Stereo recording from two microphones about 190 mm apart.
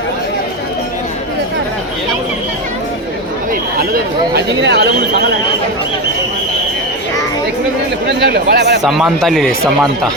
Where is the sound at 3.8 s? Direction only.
55° right (ahead or behind).